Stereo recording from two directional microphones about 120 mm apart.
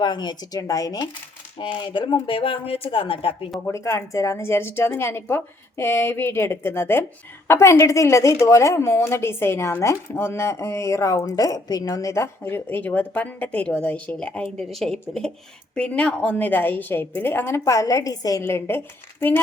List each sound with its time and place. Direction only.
0.0 s speech: 40° left (ahead or behind)
1.5 s a sound: 45° left (ahead or behind)
3.7 s speech: 25° left (ahead or behind)